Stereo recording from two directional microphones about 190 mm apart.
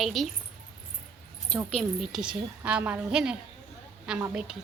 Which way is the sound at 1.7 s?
Centre (ahead or behind).